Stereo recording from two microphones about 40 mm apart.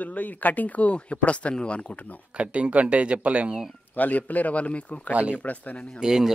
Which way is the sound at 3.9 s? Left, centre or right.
Left.